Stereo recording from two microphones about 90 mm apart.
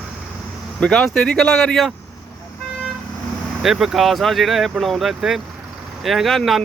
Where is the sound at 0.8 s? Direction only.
5° left (ahead or behind).